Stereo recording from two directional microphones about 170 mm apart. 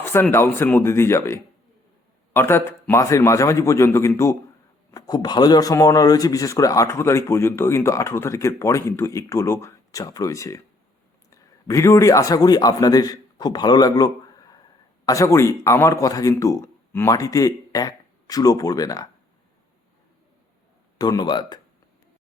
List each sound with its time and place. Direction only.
0.0 s a man's voice: 15° left (ahead or behind)
21.0 s speech: 25° left (ahead or behind)